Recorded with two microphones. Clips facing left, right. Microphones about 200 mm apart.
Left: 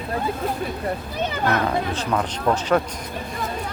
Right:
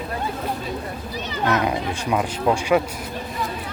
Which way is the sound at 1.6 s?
10° right (ahead or behind).